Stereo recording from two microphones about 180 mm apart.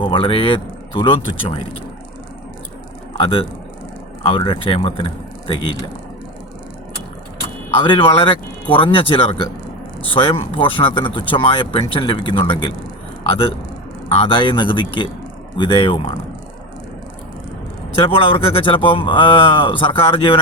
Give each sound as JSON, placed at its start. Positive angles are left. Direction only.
{"t": 0.0, "sound": "speech", "side_deg": 30}
{"t": 3.2, "sound": "a man's voice", "side_deg": 30}
{"t": 7.9, "sound": "speech", "side_deg": 30}
{"t": 14.3, "sound": "speech", "side_deg": 25}
{"t": 18.0, "sound": "speech", "side_deg": 30}